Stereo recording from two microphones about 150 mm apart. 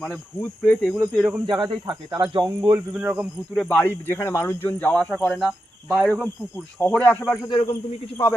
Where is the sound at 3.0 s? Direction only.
10° right (ahead or behind).